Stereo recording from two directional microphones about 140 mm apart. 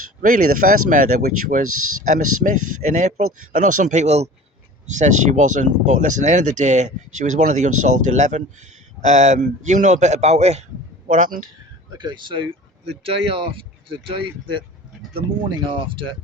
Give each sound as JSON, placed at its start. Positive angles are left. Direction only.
{"t": 0.2, "sound": "speech", "side_deg": -75}
{"t": 11.1, "sound": "speech", "side_deg": -65}
{"t": 11.9, "sound": "speech", "side_deg": -35}